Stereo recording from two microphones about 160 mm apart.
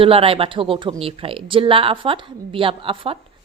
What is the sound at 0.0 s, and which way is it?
Speech, 35° right (ahead or behind).